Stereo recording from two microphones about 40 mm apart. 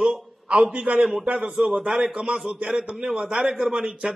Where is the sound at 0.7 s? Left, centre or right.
Right.